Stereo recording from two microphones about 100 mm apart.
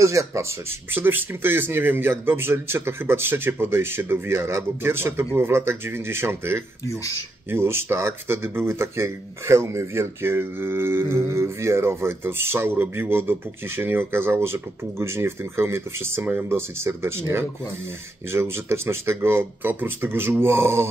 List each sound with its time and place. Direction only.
0.0 s speech: 30° right (ahead or behind)
0.9 s speech: 20° right (ahead or behind)